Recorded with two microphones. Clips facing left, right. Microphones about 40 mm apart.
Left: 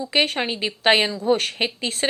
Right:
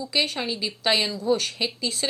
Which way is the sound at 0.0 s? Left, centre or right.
Left.